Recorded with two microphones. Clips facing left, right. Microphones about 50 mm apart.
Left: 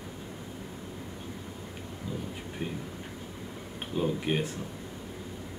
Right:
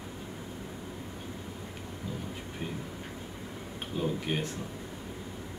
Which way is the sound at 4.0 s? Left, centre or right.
Centre.